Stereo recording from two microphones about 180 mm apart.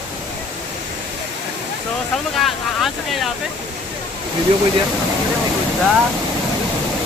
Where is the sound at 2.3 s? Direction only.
Centre (ahead or behind).